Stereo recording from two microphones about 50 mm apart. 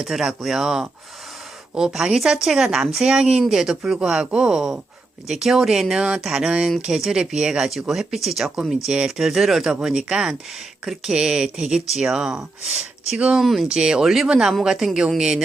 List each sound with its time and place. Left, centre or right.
0.0 s speech: centre
13.1 s speech: right
13.4 s speech: centre
13.7 s speech: centre